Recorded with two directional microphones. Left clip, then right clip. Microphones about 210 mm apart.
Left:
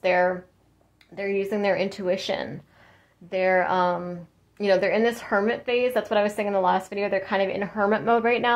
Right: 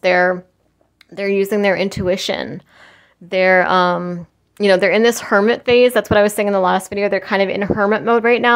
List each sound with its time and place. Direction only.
0.0 s speech: 40° right (ahead or behind)